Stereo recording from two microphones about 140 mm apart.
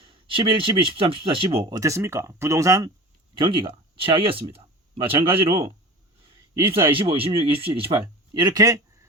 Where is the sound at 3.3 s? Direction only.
35° right (ahead or behind).